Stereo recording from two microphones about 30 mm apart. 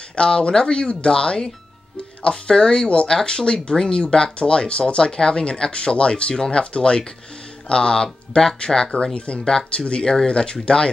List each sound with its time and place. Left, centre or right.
0.1 s speech: left
9.1 s speech: left